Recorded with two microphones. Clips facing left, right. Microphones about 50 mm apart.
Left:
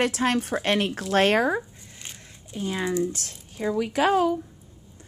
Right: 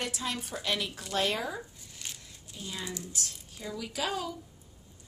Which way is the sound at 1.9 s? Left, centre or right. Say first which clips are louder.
Left 2 dB; left.